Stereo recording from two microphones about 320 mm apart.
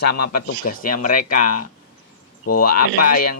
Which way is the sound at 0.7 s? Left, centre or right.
Left.